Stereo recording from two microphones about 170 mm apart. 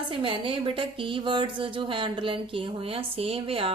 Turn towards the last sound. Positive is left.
turn(degrees=-35)  # may be behind; listen again after turning